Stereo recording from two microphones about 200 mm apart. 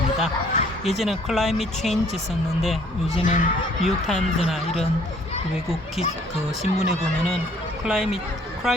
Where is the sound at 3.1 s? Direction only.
40° left (ahead or behind).